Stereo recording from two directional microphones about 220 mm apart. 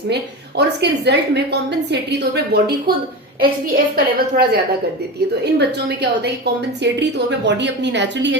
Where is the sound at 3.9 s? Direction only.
45° right (ahead or behind).